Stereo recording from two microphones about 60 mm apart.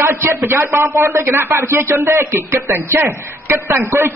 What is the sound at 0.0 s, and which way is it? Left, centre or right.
A man's voice, right.